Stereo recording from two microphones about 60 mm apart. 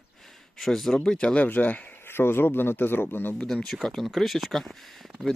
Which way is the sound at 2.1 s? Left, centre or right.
Left.